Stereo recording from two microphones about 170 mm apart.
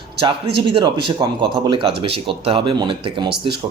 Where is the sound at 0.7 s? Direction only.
30° right (ahead or behind).